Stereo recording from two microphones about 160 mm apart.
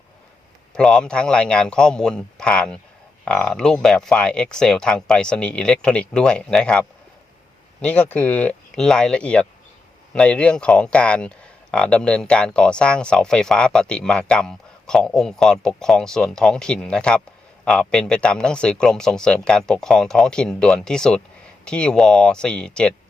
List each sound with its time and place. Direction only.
0.7 s speech: 5° left (ahead or behind)